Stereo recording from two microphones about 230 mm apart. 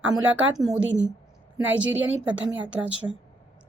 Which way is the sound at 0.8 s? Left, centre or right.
Right.